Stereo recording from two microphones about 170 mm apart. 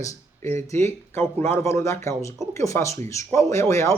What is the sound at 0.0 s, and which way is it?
A man's voice, 15° left (ahead or behind).